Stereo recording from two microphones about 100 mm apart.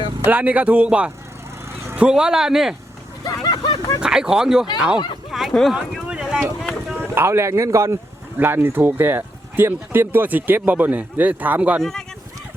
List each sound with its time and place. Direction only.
0.3 s speech: 15° right (ahead or behind)
3.2 s a sound: 45° left (ahead or behind)
4.0 s speech: 10° right (ahead or behind)
6.7 s a sound: centre (ahead or behind)
7.1 s speech: 25° right (ahead or behind)
11.8 s speech: 5° left (ahead or behind)